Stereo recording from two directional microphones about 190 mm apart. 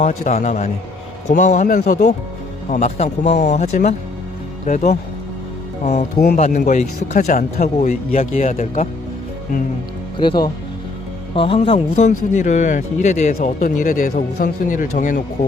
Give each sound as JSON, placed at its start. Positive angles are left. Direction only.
{"t": 0.0, "sound": "speech", "side_deg": 35}
{"t": 6.1, "sound": "speech", "side_deg": 55}
{"t": 6.4, "sound": "speech", "side_deg": 40}
{"t": 10.2, "sound": "speech", "side_deg": 25}